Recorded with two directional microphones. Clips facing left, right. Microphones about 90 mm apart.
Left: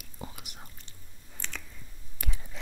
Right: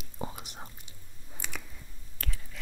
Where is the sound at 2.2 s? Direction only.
20° left (ahead or behind).